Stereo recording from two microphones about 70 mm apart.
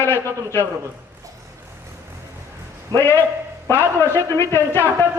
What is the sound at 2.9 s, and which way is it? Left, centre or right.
Speech, left.